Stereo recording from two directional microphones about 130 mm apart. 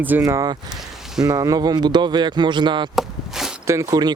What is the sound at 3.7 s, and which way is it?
Speech, 25° right (ahead or behind).